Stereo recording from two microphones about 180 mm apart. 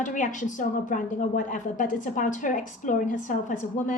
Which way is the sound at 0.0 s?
45° left (ahead or behind).